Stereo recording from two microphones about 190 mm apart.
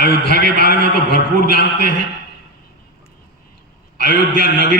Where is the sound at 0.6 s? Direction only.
55° left (ahead or behind).